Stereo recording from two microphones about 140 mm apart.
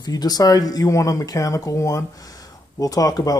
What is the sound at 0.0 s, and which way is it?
Speech, 30° left (ahead or behind).